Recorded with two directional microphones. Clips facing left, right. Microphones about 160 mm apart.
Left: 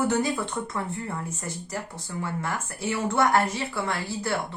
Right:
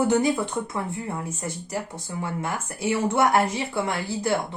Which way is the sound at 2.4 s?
20° right (ahead or behind).